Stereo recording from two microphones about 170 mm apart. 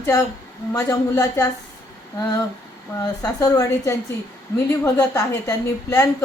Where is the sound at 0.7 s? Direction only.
20° left (ahead or behind).